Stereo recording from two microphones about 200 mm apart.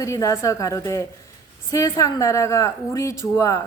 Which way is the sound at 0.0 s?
15° left (ahead or behind).